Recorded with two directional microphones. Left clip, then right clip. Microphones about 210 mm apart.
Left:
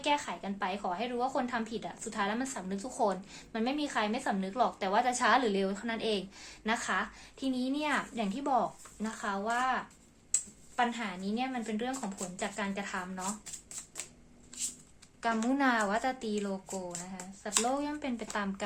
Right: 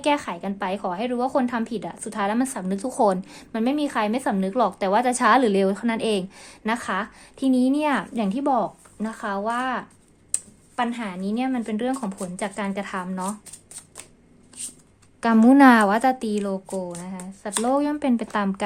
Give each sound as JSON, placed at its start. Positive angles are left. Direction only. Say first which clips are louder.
{"t": 0.0, "sound": "a woman's voice", "louder": "right 8 dB", "side_deg": -50}
{"t": 15.2, "sound": "a woman's voice", "louder": "right 15 dB", "side_deg": -50}
{"t": 17.7, "sound": "a woman's voice", "louder": "right 12 dB", "side_deg": -50}